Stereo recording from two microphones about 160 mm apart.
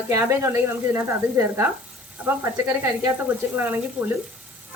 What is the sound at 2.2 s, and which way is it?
Speech, 15° right (ahead or behind).